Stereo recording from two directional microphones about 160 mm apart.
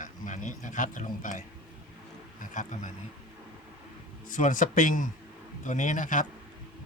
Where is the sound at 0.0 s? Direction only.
55° left (ahead or behind).